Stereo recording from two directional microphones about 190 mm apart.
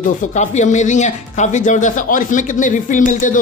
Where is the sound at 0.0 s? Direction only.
40° left (ahead or behind).